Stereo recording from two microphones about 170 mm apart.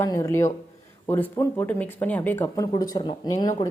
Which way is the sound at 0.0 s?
15° left (ahead or behind).